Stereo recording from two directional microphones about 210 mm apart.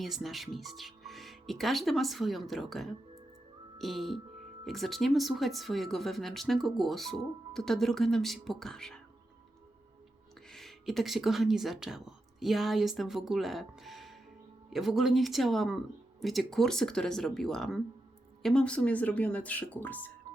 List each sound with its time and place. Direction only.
0.0 s speech: centre (ahead or behind)
10.5 s speech: centre (ahead or behind)